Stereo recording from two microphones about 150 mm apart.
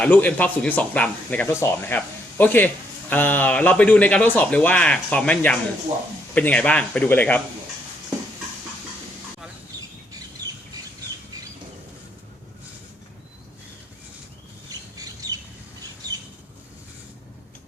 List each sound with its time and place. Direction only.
0.0 s speech: 10° left (ahead or behind)
14.7 s squawk: 25° right (ahead or behind)